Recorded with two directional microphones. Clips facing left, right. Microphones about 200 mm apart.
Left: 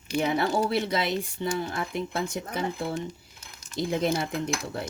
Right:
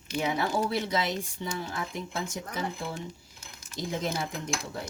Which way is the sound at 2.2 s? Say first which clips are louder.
Left 5 dB; 60° left (ahead or behind).